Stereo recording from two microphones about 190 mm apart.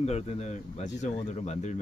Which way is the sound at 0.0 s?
35° left (ahead or behind).